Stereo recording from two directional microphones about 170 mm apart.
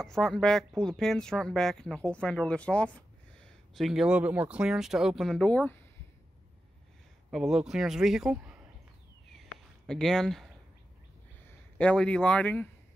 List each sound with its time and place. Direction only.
0.0 s speech: 5° left (ahead or behind)
7.2 s speech: centre (ahead or behind)
9.8 s speech: 5° left (ahead or behind)